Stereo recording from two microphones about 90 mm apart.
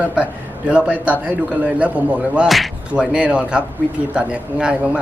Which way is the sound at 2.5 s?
Centre (ahead or behind).